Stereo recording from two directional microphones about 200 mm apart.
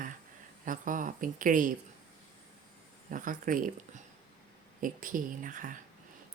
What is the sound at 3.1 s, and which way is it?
A woman's voice, 40° right (ahead or behind).